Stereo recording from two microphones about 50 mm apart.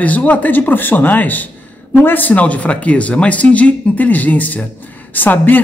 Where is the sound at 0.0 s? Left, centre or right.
Left.